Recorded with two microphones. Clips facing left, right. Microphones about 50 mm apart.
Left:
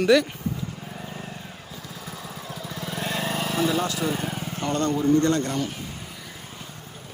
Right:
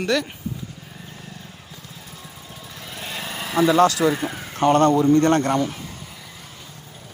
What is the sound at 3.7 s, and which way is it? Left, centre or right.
Speech, right.